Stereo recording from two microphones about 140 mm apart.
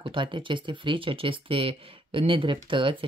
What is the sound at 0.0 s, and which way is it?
Speech, 35° right (ahead or behind).